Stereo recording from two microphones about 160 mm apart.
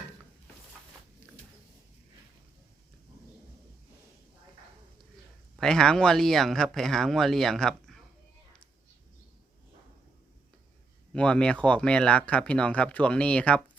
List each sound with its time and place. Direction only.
1.2 s a sound: 15° left (ahead or behind)
5.5 s speech: 5° left (ahead or behind)
11.1 s speech: 5° left (ahead or behind)